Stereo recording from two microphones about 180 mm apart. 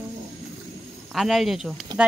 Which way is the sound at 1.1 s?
Centre (ahead or behind).